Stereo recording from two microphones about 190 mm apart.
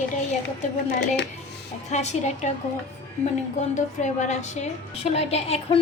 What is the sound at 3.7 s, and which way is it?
A woman's voice, 40° left (ahead or behind).